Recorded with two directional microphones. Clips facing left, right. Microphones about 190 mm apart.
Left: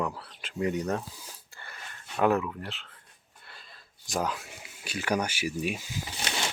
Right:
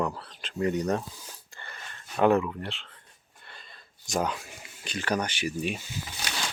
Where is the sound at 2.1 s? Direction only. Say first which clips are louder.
Right 3 dB; centre (ahead or behind).